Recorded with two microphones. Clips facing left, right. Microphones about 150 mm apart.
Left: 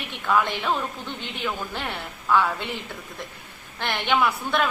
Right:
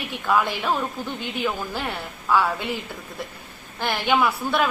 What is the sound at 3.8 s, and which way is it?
Speech, 5° right (ahead or behind).